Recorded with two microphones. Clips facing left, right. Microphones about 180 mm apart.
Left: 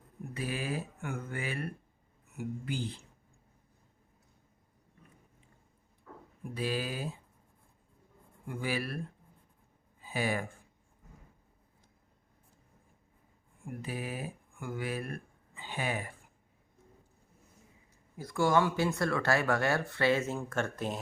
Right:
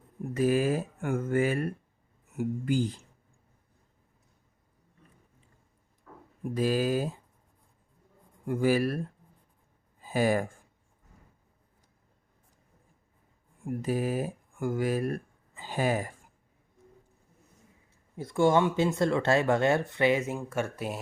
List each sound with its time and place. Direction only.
0.3 s speech: 45° right (ahead or behind)
6.4 s speech: 45° right (ahead or behind)
8.4 s speech: 45° right (ahead or behind)
10.0 s speech: 45° right (ahead or behind)
13.7 s speech: 40° right (ahead or behind)
18.2 s speech: 25° right (ahead or behind); by 21.0 s 10° right (ahead or behind)